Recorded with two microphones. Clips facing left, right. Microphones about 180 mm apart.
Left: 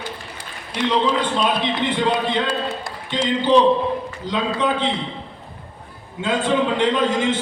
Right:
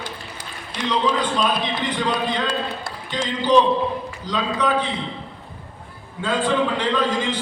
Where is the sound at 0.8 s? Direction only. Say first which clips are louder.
Left 2 dB; 25° left (ahead or behind).